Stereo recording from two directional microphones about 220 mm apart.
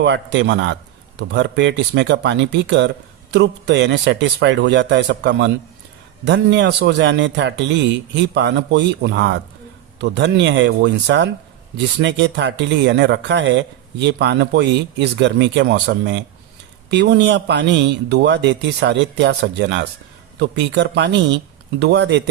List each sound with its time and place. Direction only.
0.0 s a man's voice: 55° right (ahead or behind)